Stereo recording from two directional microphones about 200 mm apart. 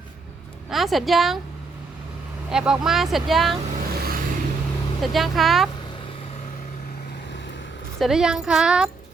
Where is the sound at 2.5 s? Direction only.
5° right (ahead or behind).